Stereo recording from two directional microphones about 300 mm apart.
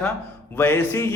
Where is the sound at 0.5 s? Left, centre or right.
Centre.